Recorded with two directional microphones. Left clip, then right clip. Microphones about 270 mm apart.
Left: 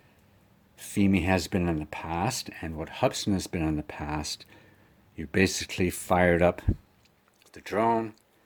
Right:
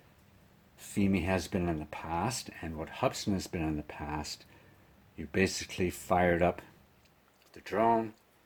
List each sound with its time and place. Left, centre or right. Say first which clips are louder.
0.8 s speech: left 6 dB; left